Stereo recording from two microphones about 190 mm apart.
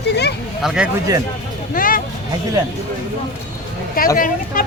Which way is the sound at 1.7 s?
45° left (ahead or behind).